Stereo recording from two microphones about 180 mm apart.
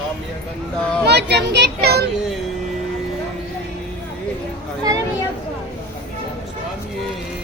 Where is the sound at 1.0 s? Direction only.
65° right (ahead or behind).